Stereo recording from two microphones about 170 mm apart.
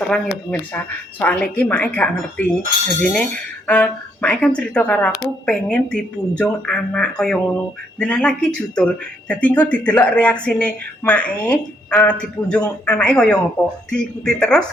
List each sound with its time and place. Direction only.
0.1 s speech: 10° left (ahead or behind)